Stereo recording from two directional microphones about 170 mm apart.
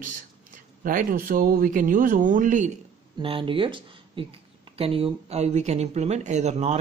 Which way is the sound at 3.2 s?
30° right (ahead or behind).